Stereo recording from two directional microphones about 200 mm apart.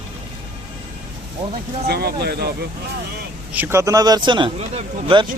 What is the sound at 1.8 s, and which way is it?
Speech, 50° right (ahead or behind).